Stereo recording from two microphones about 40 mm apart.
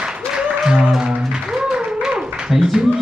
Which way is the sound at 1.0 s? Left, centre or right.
Right.